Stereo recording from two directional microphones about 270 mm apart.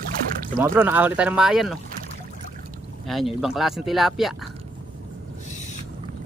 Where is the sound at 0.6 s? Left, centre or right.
Centre.